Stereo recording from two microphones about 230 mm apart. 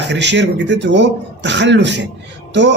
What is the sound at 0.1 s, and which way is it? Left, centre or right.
A man's voice, right.